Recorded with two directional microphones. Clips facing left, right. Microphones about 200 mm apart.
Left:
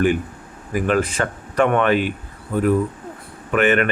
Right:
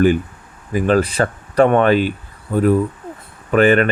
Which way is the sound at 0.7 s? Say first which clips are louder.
Right 4 dB; 35° right (ahead or behind).